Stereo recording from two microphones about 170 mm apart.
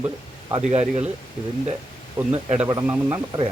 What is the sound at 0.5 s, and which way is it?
Speech, 35° right (ahead or behind).